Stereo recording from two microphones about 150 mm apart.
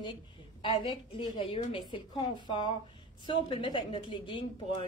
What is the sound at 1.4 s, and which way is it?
Speech, 35° left (ahead or behind).